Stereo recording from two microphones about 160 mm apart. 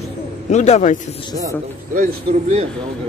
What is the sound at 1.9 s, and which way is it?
Speech, 55° right (ahead or behind).